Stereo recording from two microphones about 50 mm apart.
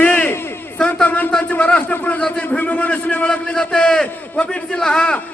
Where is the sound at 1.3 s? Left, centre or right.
Left.